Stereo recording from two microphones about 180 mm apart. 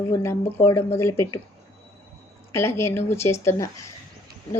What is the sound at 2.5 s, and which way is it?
A woman's voice, 15° left (ahead or behind).